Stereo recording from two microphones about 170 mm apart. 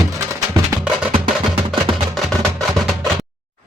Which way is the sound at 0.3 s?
15° right (ahead or behind).